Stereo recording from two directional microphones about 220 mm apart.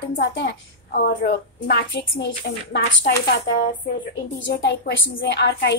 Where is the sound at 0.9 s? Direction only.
45° left (ahead or behind).